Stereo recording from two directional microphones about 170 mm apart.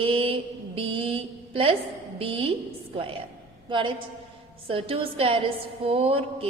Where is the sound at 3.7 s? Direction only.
30° right (ahead or behind).